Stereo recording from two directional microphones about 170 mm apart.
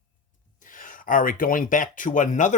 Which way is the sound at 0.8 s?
55° left (ahead or behind).